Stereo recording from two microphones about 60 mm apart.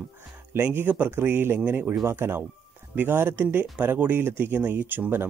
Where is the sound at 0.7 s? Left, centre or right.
Right.